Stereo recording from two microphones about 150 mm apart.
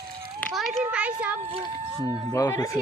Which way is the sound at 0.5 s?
5° right (ahead or behind).